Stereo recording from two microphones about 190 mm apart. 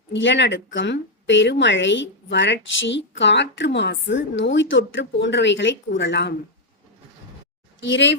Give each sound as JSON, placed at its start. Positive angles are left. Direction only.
{"t": 0.1, "sound": "a woman's voice", "side_deg": 70}
{"t": 7.8, "sound": "a woman's voice", "side_deg": 70}